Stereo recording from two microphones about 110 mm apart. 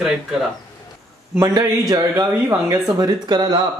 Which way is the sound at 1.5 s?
35° right (ahead or behind).